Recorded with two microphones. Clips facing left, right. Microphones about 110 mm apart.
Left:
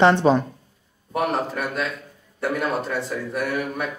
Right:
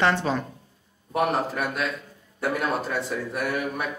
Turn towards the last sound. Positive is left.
turn(degrees=0)  # may be behind; listen again after turning